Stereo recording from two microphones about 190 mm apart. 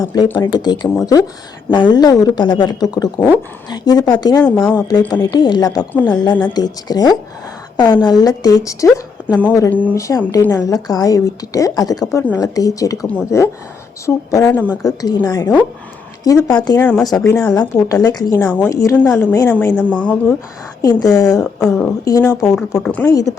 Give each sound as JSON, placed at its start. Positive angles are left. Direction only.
{"t": 0.0, "sound": "a woman's voice", "side_deg": 15}
{"t": 14.6, "sound": "a woman's voice", "side_deg": -10}
{"t": 14.8, "sound": "a woman's voice", "side_deg": 20}
{"t": 17.0, "sound": "speech", "side_deg": 20}
{"t": 18.4, "sound": "a woman's voice", "side_deg": 5}
{"t": 18.7, "sound": "a woman's voice", "side_deg": 20}
{"t": 21.2, "sound": "a woman's voice", "side_deg": 20}